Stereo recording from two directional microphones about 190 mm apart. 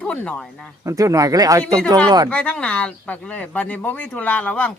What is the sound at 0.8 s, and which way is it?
Speech, 15° right (ahead or behind).